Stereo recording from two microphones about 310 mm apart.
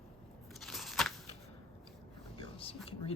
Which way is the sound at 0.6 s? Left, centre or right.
Centre.